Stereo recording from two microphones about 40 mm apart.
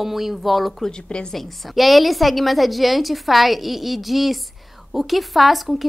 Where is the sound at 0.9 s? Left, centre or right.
Left.